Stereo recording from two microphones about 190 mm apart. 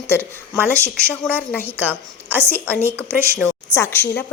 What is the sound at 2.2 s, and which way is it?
A woman's voice, 10° right (ahead or behind).